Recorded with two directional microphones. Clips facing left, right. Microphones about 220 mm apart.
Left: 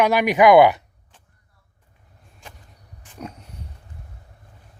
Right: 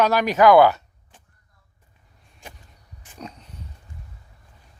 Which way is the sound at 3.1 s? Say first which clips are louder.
Left 3 dB; 10° left (ahead or behind).